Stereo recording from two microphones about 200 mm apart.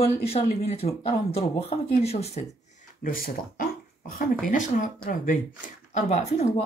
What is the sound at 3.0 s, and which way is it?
Speech, 45° left (ahead or behind).